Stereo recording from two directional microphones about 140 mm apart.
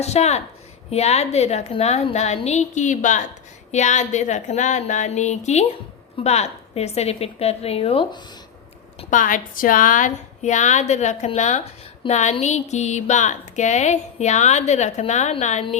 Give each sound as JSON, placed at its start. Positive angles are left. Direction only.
{"t": 0.0, "sound": "a woman's voice", "side_deg": 50}
{"t": 9.0, "sound": "speech", "side_deg": 70}